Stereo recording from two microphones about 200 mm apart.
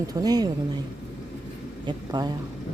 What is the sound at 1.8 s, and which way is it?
Speech, 20° right (ahead or behind).